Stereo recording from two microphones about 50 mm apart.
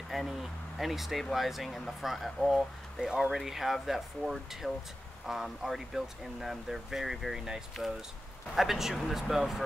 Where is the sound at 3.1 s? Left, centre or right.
Centre.